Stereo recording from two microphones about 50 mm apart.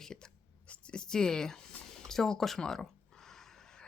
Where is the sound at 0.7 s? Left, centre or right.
Centre.